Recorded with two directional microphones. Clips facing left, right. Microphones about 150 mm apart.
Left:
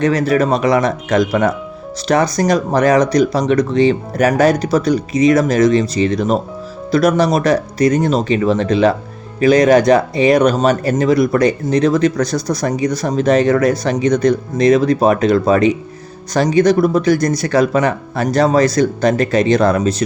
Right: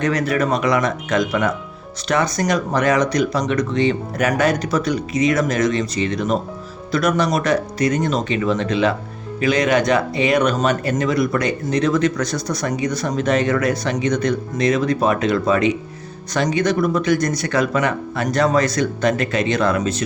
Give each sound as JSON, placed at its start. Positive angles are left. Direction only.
{"t": 0.0, "sound": "speech", "side_deg": 30}